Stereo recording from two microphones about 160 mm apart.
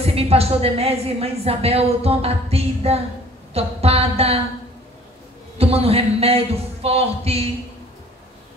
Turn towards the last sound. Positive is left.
turn(degrees=-40)  # may be behind; listen again after turning